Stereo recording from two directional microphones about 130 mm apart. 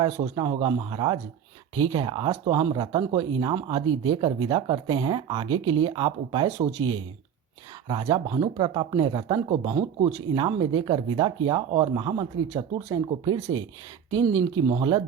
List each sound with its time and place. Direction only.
0.0 s speech: 40° right (ahead or behind)
7.9 s speech: 35° right (ahead or behind)